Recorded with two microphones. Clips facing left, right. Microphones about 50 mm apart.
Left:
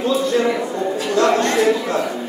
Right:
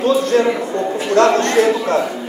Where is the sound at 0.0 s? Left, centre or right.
Right.